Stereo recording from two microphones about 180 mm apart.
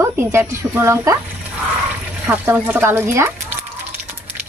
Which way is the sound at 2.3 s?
10° right (ahead or behind).